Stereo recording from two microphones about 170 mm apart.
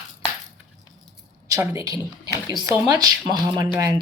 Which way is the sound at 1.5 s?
20° right (ahead or behind).